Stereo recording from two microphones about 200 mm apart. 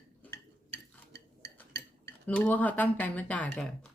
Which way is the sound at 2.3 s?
10° left (ahead or behind).